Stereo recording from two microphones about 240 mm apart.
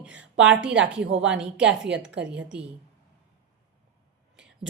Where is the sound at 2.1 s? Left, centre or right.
Right.